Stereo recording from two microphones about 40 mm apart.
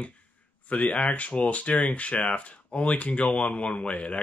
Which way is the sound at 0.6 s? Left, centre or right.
Left.